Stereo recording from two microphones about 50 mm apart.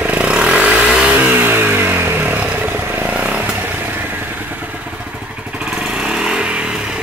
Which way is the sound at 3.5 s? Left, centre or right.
Right.